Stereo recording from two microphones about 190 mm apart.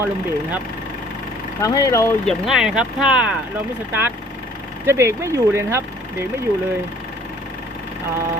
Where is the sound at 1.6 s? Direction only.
15° left (ahead or behind).